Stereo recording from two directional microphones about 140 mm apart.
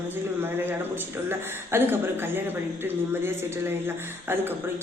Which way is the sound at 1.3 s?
15° right (ahead or behind).